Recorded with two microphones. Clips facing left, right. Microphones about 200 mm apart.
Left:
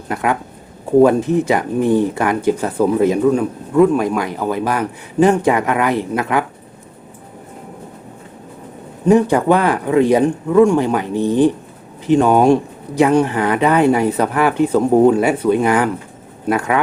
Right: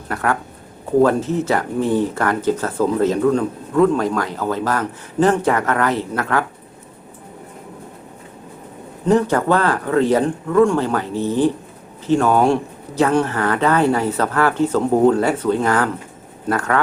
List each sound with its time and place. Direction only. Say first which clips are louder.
0.1 s speech: left 2 dB; 15° left (ahead or behind)
9.0 s speech: left 4 dB; 15° left (ahead or behind)